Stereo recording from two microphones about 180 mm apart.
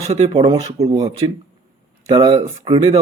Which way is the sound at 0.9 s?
25° right (ahead or behind).